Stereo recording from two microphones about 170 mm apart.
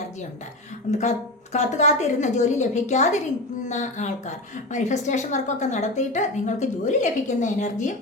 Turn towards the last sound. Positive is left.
turn(degrees=45)  # may be behind; listen again after turning